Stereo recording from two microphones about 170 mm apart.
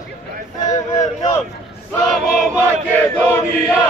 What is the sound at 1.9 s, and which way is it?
Chant, 10° left (ahead or behind).